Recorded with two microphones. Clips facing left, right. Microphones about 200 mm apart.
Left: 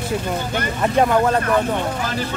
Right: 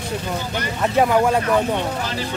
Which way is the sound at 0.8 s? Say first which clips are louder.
Even; 5° right (ahead or behind).